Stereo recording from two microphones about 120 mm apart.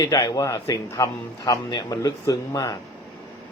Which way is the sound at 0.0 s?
25° left (ahead or behind).